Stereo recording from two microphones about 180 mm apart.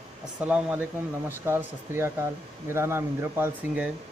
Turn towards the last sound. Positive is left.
turn(degrees=-10)  # may be behind; listen again after turning